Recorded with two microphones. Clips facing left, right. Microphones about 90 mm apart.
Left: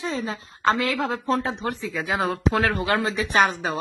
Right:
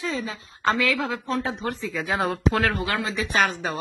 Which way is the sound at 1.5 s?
15° left (ahead or behind).